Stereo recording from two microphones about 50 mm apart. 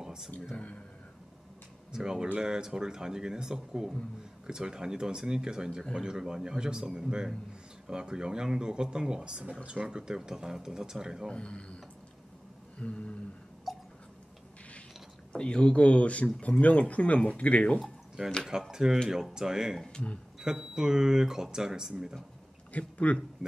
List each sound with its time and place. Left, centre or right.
0.0 s music: centre
1.9 s speech: centre
9.8 s speech: centre
11.3 s speech: left
12.7 s a sound: left
13.7 s a sound: centre
15.3 s speech: left
18.7 s speech: centre
22.7 s speech: left